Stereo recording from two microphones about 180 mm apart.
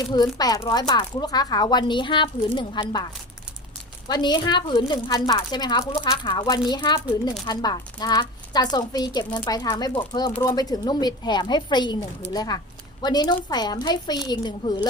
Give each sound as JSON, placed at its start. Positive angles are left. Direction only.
{"t": 0.1, "sound": "a woman's voice", "side_deg": 20}
{"t": 4.1, "sound": "a woman's voice", "side_deg": 25}